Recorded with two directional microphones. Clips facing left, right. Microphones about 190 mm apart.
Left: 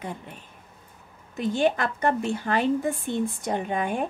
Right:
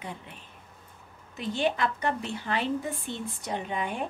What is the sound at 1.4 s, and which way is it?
A woman's voice, 50° left (ahead or behind).